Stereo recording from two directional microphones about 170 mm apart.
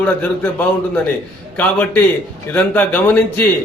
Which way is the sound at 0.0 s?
10° left (ahead or behind).